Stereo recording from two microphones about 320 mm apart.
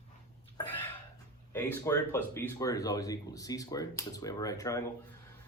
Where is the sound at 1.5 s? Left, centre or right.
Centre.